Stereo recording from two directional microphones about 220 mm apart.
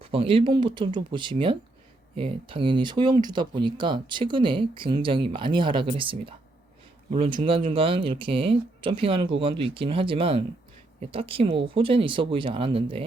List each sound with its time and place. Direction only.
0.0 s speech: 25° right (ahead or behind)